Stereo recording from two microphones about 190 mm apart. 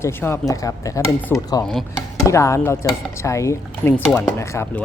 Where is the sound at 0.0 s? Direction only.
10° left (ahead or behind).